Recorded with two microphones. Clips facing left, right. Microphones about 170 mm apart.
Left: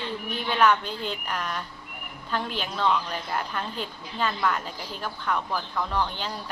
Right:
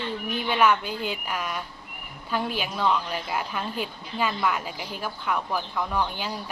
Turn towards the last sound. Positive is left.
turn(degrees=-10)  # may be behind; listen again after turning